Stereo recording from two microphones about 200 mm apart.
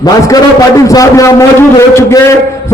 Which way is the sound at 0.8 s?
15° left (ahead or behind).